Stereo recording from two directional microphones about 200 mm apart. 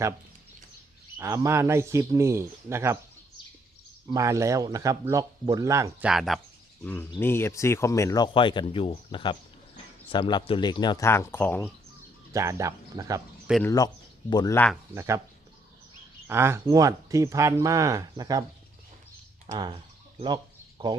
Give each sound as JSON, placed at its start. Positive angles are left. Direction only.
{"t": 1.2, "sound": "speech", "side_deg": -15}
{"t": 4.1, "sound": "speech", "side_deg": -15}
{"t": 6.1, "sound": "speech", "side_deg": 0}
{"t": 12.3, "sound": "speech", "side_deg": -15}
{"t": 13.7, "sound": "speech", "side_deg": 20}
{"t": 14.9, "sound": "speech", "side_deg": -15}
{"t": 16.2, "sound": "speech", "side_deg": -10}
{"t": 19.5, "sound": "a sound", "side_deg": -25}